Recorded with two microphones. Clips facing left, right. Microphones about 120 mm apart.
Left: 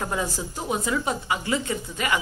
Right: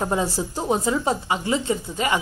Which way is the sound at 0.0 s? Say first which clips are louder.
Right 5 dB; 25° right (ahead or behind).